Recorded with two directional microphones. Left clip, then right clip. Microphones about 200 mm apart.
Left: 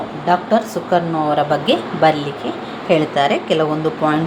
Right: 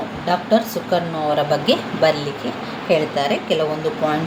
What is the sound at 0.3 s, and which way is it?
Speech, 10° left (ahead or behind).